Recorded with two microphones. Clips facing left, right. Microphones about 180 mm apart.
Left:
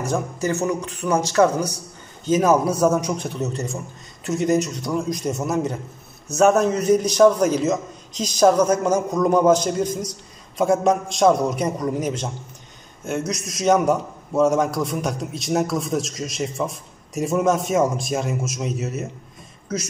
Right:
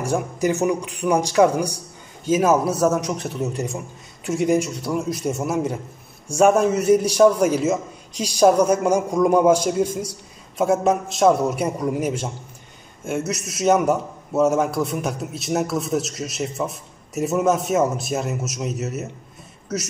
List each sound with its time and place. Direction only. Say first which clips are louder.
0.0 s a man's voice: right 2 dB; 15° right (ahead or behind)